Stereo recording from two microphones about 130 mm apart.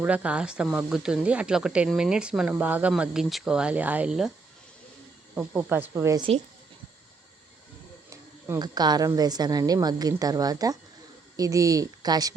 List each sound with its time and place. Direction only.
0.0 s speech: 10° right (ahead or behind)
5.3 s speech: 10° right (ahead or behind)
8.1 s a woman's voice: 30° right (ahead or behind)